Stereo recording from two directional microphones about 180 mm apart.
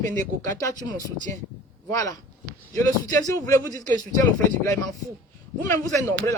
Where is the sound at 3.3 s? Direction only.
20° left (ahead or behind).